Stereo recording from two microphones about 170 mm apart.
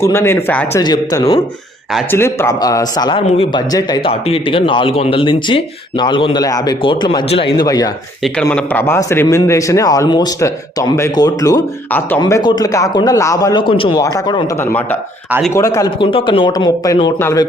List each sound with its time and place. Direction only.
0.0 s a man's voice: 15° left (ahead or behind)
0.8 s a man's voice: 20° left (ahead or behind)
3.7 s speech: 20° left (ahead or behind)
8.2 s a man's voice: 5° left (ahead or behind)
12.2 s speech: 25° left (ahead or behind)
14.6 s a man's voice: 10° left (ahead or behind)